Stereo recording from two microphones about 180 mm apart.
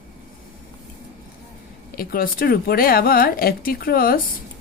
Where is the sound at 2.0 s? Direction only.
55° left (ahead or behind).